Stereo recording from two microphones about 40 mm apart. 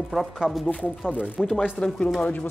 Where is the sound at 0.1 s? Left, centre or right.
Centre.